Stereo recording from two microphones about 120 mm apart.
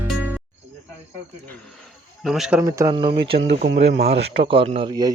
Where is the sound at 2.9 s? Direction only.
50° right (ahead or behind).